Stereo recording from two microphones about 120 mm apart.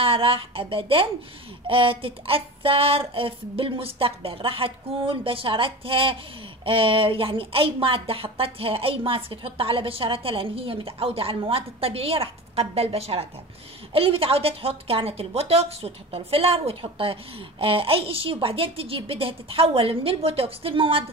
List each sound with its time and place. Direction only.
0.0 s a woman's voice: 50° right (ahead or behind)